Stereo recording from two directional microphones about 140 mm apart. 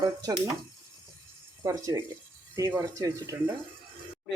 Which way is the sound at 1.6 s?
25° right (ahead or behind).